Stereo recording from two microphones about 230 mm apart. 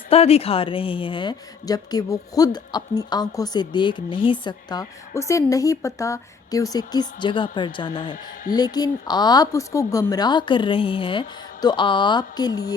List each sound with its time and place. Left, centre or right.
0.1 s a woman's voice: left